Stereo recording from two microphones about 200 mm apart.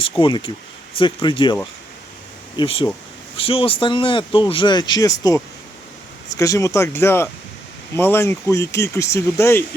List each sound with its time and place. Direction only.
0.2 s speech: 25° left (ahead or behind)
2.6 s speech: 25° left (ahead or behind)